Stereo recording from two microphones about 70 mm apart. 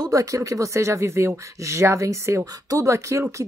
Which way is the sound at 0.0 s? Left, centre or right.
Right.